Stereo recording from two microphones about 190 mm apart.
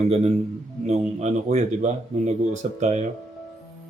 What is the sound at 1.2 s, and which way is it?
A man's voice, 35° right (ahead or behind).